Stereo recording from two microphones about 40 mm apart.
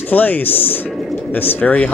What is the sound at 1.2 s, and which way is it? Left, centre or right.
Speech, left.